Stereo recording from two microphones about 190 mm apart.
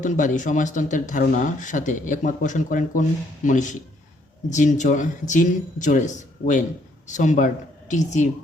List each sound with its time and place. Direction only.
0.0 s speech: 40° left (ahead or behind)